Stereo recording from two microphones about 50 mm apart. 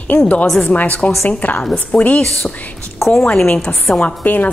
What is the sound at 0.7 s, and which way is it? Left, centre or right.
A woman's voice, left.